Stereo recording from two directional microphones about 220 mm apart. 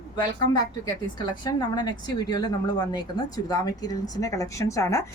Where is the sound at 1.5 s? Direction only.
20° left (ahead or behind).